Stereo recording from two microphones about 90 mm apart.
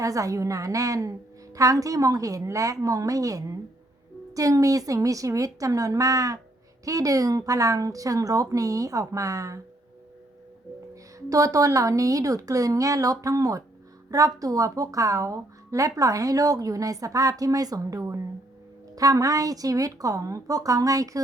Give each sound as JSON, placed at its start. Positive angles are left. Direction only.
{"t": 0.0, "sound": "speech", "side_deg": -40}
{"t": 11.3, "sound": "speech", "side_deg": -40}